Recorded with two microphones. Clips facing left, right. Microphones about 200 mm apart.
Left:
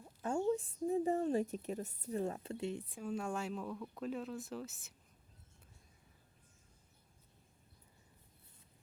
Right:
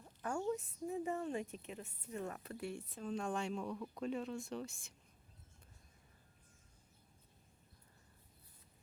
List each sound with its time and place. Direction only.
0.2 s a woman's voice: 25° left (ahead or behind); by 4.9 s 5° left (ahead or behind)